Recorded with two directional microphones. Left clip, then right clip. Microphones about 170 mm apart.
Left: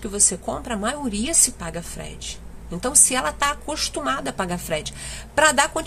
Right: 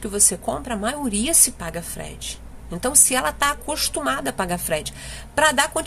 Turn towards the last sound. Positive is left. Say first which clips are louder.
# left 1 dB
turn(degrees=0)  # may be behind; listen again after turning